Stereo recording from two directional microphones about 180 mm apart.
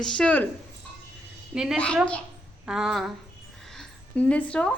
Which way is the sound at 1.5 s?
5° right (ahead or behind).